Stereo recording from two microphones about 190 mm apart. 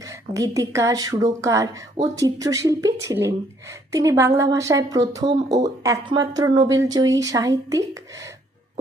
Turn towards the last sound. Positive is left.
turn(degrees=-15)  # may be behind; listen again after turning